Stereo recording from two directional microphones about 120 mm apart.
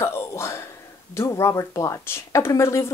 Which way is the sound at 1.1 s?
25° left (ahead or behind).